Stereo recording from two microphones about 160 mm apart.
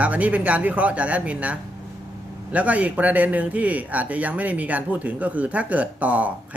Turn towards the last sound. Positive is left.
turn(degrees=-10)  # may be behind; listen again after turning